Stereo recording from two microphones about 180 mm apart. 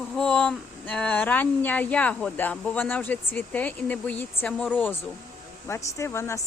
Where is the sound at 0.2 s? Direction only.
5° left (ahead or behind).